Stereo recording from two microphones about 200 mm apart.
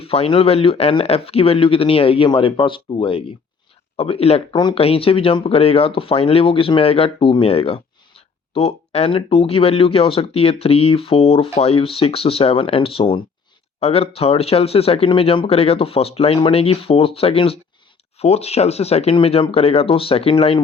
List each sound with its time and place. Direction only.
0.0 s speech: 30° left (ahead or behind)